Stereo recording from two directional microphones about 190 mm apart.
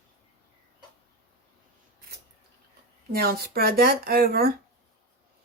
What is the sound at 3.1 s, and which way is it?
Speech, 55° right (ahead or behind).